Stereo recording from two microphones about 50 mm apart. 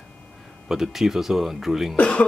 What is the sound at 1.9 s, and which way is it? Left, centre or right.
Speech, left.